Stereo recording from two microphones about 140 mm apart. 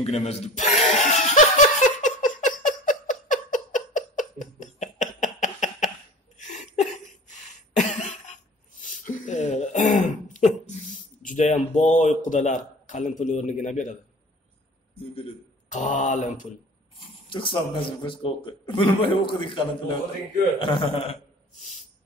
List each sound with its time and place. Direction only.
0.0 s chuckle: 50° left (ahead or behind)
6.3 s a sound: 60° left (ahead or behind)
8.8 s throat clearing: 65° left (ahead or behind)
15.7 s mantra: 65° left (ahead or behind)
17.3 s a man's voice: 40° left (ahead or behind)